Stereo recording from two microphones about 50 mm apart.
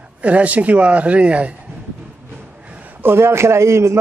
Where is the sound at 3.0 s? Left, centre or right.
Right.